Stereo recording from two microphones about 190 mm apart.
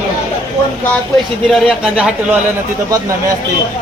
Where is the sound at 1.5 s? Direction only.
5° right (ahead or behind).